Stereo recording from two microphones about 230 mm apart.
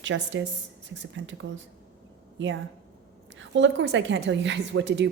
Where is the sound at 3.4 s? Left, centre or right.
Right.